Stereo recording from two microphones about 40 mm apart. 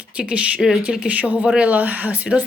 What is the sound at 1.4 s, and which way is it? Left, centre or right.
Speech, right.